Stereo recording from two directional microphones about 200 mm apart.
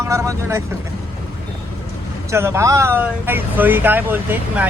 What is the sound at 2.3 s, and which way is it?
Speech, 15° right (ahead or behind).